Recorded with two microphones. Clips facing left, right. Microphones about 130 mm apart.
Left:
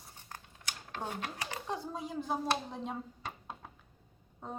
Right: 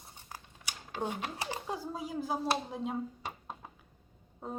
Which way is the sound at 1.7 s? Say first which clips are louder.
Left 2 dB; 5° right (ahead or behind).